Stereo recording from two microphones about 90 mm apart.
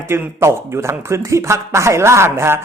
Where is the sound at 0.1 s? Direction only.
30° right (ahead or behind).